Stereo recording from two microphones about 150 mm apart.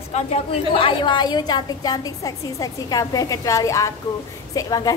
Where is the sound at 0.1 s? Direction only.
40° left (ahead or behind).